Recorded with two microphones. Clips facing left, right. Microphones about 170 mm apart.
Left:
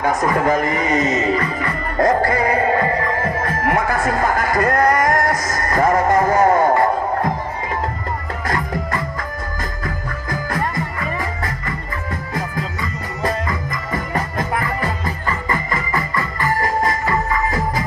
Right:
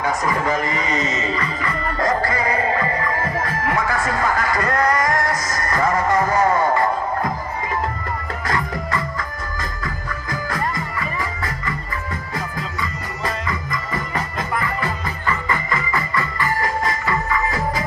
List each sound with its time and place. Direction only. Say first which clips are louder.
0.0 s speech: left 4 dB; 55° left (ahead or behind)
3.6 s music: left 4 dB; 50° left (ahead or behind)
13.2 s music: left 4 dB; 45° left (ahead or behind)